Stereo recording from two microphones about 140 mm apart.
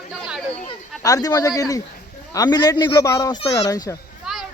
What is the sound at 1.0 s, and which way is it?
A man's voice, 25° left (ahead or behind).